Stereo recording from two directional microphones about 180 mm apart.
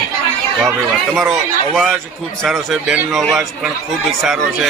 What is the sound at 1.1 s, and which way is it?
A man's voice, centre (ahead or behind).